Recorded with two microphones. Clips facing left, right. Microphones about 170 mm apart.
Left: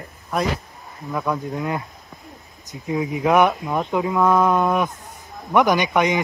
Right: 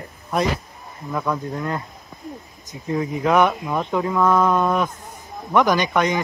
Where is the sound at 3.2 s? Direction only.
20° left (ahead or behind).